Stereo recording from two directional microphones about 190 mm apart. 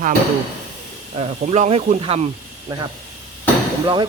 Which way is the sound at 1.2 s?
35° right (ahead or behind).